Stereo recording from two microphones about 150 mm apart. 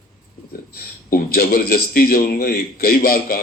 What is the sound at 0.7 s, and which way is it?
A man's voice, 85° left.